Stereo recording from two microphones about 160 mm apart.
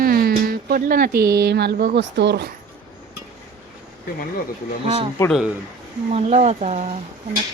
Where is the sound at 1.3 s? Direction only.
90° right.